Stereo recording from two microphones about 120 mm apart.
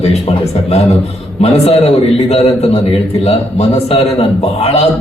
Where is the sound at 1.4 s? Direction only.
60° left (ahead or behind).